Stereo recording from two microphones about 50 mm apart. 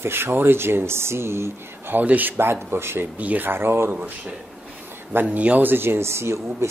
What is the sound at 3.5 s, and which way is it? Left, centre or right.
Speech, right.